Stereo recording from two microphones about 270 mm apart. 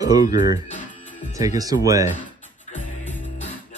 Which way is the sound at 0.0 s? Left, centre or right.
Centre.